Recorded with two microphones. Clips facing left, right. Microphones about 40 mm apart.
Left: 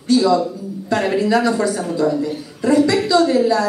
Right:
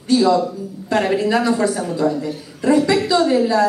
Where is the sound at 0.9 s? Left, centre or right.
Centre.